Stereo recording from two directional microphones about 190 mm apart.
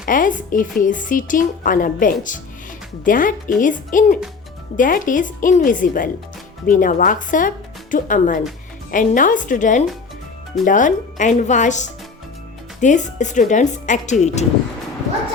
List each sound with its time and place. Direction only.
0.0 s speech: 45° left (ahead or behind)